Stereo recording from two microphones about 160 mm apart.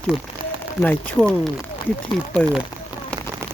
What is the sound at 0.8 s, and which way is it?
Speech, 10° left (ahead or behind).